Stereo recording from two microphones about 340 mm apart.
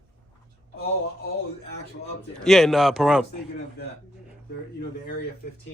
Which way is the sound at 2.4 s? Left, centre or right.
Centre.